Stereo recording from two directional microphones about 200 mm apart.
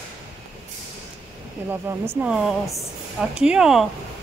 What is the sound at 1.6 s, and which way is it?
Speech, 10° right (ahead or behind).